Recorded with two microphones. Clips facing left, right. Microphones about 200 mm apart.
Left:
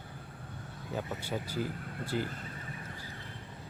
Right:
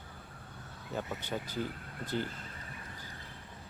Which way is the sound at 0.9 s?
10° left (ahead or behind).